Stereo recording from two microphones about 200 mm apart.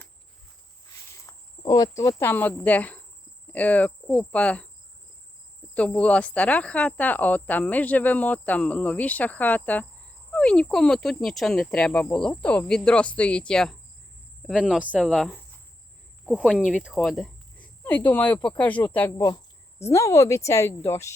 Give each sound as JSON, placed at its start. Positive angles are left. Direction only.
{"t": 1.3, "sound": "cricket", "side_deg": 20}
{"t": 2.0, "sound": "speech", "side_deg": 15}
{"t": 5.7, "sound": "speech", "side_deg": 5}